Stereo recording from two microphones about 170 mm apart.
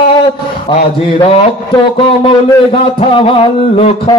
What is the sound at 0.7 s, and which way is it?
Speech, 30° left (ahead or behind).